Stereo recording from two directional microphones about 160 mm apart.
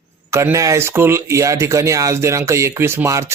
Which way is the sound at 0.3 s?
20° right (ahead or behind).